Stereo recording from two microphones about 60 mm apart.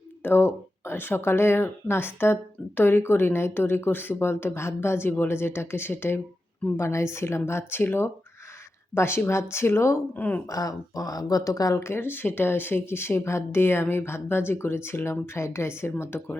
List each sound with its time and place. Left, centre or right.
0.2 s speech: left
6.7 s speech: left
10.2 s speech: left
10.5 s speech: left
11.7 s speech: left